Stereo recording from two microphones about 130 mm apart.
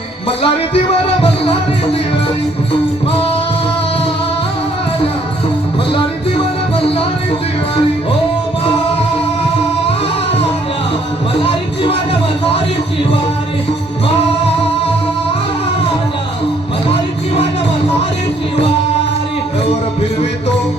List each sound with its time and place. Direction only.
0.3 s music: 45° left (ahead or behind)
6.7 s music: 45° left (ahead or behind)
11.4 s music: 45° left (ahead or behind)